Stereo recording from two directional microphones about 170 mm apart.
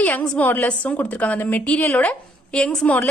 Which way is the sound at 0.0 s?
5° left (ahead or behind).